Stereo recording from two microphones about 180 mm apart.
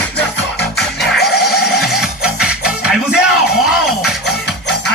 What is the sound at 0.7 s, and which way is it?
Music, 65° left (ahead or behind).